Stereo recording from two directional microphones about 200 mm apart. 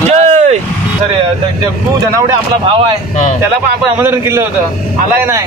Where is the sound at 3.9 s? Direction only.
10° right (ahead or behind).